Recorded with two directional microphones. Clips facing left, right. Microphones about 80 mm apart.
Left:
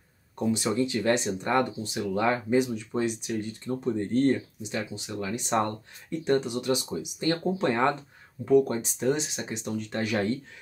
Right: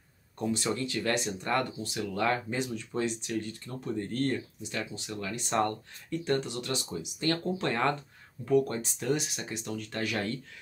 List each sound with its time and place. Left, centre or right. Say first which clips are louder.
0.4 s speech: left 5 dB; centre